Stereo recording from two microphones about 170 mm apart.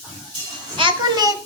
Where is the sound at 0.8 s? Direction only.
25° right (ahead or behind).